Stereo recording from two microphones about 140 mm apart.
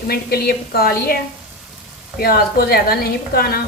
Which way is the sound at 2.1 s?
90° left.